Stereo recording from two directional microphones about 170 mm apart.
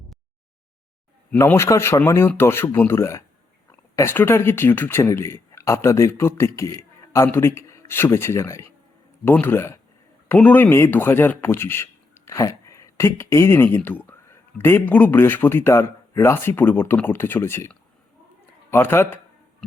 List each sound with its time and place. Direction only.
1.3 s speech: 15° left (ahead or behind)